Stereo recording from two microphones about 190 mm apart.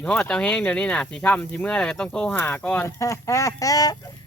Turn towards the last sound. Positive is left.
turn(degrees=20)  # may be behind; listen again after turning